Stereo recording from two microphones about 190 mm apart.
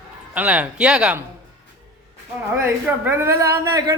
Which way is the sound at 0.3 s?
5° right (ahead or behind).